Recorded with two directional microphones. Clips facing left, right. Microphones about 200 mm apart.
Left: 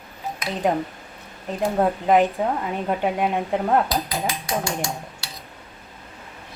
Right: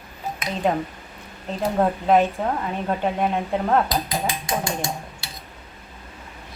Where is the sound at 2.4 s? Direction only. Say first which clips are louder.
Left 1 dB; 10° left (ahead or behind).